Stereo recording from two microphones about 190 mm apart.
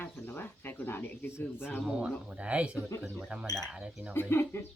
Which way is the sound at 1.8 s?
5° right (ahead or behind).